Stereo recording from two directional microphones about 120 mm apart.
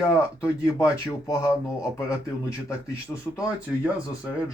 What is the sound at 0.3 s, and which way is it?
Speech, 25° left (ahead or behind).